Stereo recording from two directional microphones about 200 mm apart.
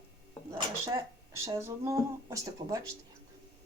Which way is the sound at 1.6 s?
15° right (ahead or behind).